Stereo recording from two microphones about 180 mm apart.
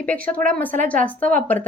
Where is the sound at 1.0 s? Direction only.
10° left (ahead or behind).